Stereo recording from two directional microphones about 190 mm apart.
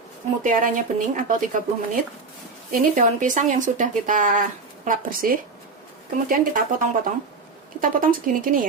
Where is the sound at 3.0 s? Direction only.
40° right (ahead or behind).